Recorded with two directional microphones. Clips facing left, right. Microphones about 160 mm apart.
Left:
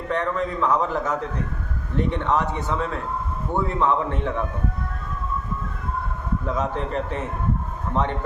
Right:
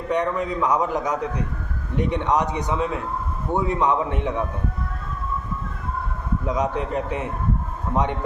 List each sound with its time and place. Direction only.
0.1 s a man's voice: 15° right (ahead or behind)
6.4 s a man's voice: 15° right (ahead or behind)